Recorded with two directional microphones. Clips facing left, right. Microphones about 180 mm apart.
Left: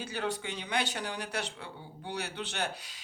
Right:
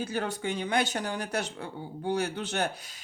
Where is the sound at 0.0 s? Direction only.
45° right (ahead or behind).